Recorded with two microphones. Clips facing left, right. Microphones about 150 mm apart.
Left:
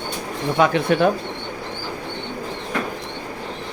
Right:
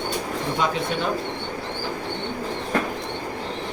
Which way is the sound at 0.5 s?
65° left (ahead or behind).